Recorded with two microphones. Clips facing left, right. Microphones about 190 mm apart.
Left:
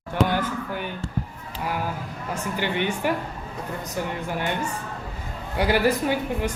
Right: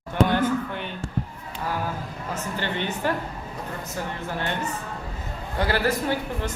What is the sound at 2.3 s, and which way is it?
Speech, 15° left (ahead or behind).